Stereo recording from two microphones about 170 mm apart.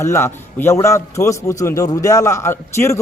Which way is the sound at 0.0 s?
15° left (ahead or behind).